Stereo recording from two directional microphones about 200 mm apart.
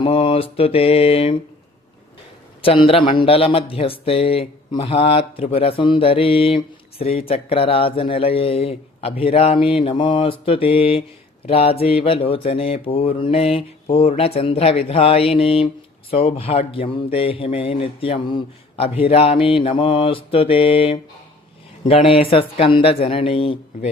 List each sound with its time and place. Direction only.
0.0 s speech: 30° left (ahead or behind)
2.6 s speech: 25° left (ahead or behind)